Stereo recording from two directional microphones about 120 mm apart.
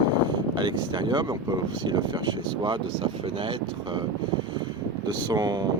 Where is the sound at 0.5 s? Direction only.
40° right (ahead or behind).